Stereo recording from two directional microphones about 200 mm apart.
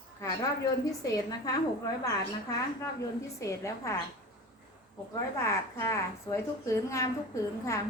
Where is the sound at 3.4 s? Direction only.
15° left (ahead or behind).